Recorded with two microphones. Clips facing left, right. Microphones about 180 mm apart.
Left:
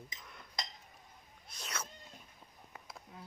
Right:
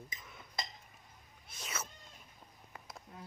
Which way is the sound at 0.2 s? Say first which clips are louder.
Right 1 dB; centre (ahead or behind).